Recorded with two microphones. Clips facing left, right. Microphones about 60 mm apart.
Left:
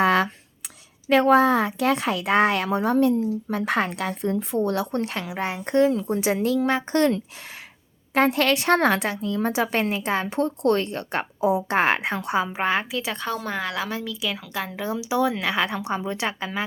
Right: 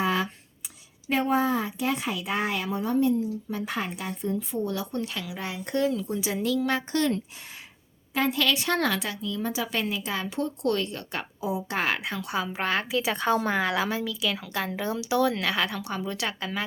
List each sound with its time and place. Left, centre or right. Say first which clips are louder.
0.0 s a sound: left 7 dB; left
1.1 s a woman's voice: left 7 dB; left
6.1 s a woman's voice: left 5 dB; left
8.1 s a woman's voice: left 5 dB; left; by 12.9 s centre
12.9 s a woman's voice: right 3 dB; centre